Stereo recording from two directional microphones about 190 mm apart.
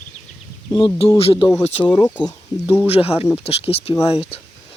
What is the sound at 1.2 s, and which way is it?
Speech, 30° left (ahead or behind).